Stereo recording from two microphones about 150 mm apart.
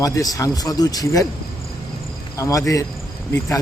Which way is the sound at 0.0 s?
25° left (ahead or behind).